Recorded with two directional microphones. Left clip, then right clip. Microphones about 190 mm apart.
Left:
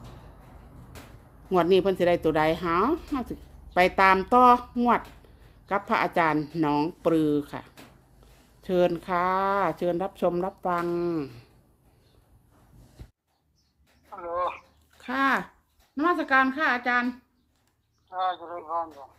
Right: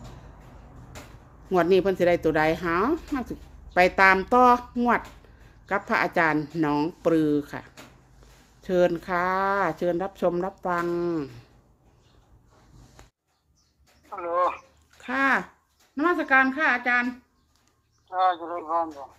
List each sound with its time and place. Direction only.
1.5 s speech: 5° left (ahead or behind)
14.1 s a sound: 20° right (ahead or behind)
15.0 s a woman's voice: 5° left (ahead or behind)
18.1 s speech: 20° right (ahead or behind)